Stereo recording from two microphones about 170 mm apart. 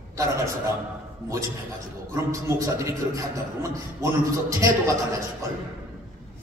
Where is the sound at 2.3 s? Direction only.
20° right (ahead or behind).